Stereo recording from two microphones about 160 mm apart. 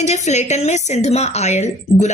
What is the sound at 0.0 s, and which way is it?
A woman's voice, 45° left (ahead or behind).